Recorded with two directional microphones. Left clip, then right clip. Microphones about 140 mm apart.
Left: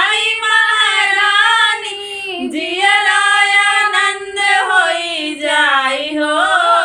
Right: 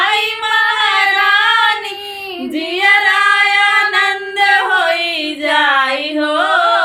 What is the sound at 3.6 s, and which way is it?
Singing, 25° right (ahead or behind).